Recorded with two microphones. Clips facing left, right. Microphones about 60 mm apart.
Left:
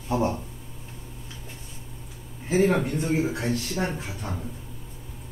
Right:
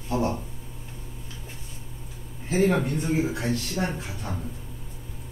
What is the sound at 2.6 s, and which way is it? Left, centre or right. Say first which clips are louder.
A man's voice: even; centre.